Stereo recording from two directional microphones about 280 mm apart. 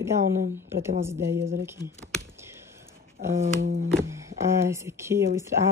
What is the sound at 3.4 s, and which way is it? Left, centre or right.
Speech, right.